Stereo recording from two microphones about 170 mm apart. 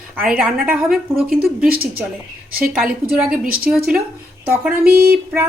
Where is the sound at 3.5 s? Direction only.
60° right (ahead or behind).